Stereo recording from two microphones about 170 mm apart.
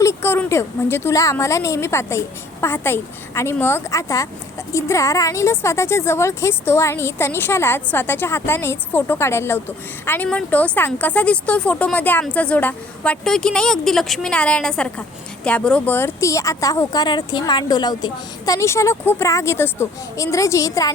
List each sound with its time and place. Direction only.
0.0 s a woman's voice: 15° left (ahead or behind)